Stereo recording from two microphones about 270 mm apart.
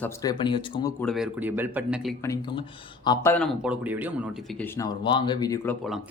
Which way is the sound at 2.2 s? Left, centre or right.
Centre.